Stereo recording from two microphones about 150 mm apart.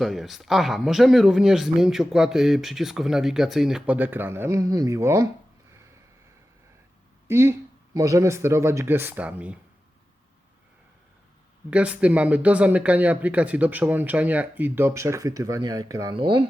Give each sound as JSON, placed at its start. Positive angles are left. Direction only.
{"t": 0.0, "sound": "speech", "side_deg": 0}
{"t": 7.3, "sound": "speech", "side_deg": -15}
{"t": 11.7, "sound": "speech", "side_deg": -10}